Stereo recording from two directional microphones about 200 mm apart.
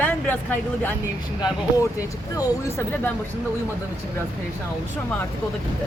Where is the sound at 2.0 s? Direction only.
20° left (ahead or behind).